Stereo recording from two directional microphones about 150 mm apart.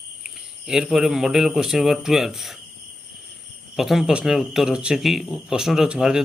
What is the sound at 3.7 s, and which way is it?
Speech, centre (ahead or behind).